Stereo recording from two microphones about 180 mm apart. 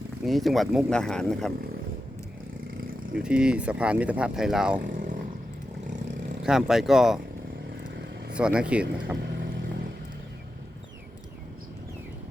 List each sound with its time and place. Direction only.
0.3 s speech: centre (ahead or behind)
3.1 s speech: 5° right (ahead or behind)
4.8 s roaring cats: 50° right (ahead or behind)
6.4 s speech: centre (ahead or behind)
8.3 s speech: 5° right (ahead or behind)
9.2 s vehicle: 70° right (ahead or behind)